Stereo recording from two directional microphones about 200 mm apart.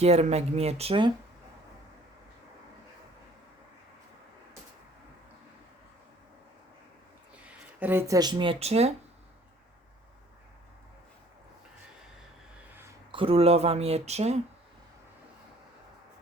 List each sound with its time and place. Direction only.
0.0 s speech: 35° right (ahead or behind)
7.4 s speech: 10° right (ahead or behind); by 8.9 s 30° right (ahead or behind)
13.1 s speech: 25° right (ahead or behind)